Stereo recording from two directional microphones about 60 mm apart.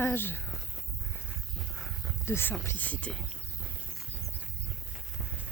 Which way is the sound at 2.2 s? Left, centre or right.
Left.